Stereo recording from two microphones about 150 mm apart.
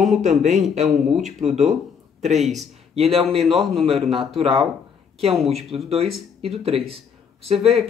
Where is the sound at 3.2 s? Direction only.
Centre (ahead or behind).